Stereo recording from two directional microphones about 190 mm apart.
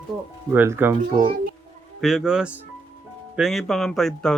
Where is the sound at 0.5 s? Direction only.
10° right (ahead or behind).